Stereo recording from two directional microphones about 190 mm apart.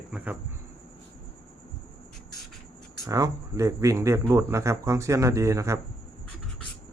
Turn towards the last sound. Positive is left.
turn(degrees=-15)  # may be behind; listen again after turning